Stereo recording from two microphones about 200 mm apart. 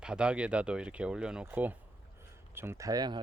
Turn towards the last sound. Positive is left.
turn(degrees=-20)  # may be behind; listen again after turning